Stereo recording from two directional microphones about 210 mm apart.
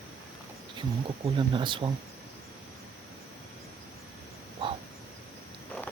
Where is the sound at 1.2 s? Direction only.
25° right (ahead or behind).